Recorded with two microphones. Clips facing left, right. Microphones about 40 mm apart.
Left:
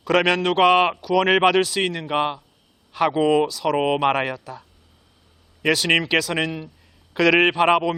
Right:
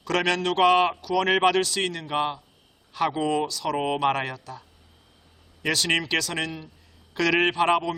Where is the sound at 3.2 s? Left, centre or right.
Left.